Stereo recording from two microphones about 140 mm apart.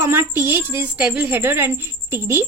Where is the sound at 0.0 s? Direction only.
15° right (ahead or behind).